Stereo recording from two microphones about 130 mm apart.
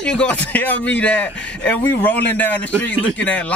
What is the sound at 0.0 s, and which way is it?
A man's voice, 10° left (ahead or behind).